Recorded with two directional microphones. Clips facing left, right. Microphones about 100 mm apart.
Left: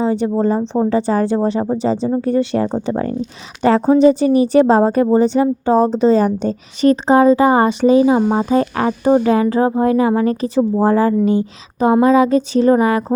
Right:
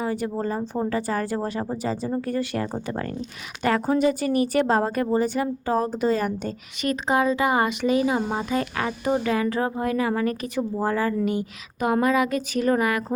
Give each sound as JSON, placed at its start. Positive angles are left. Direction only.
{"t": 0.0, "sound": "a woman's voice", "side_deg": 25}